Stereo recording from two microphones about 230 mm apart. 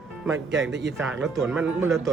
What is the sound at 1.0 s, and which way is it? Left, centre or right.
Speech, centre.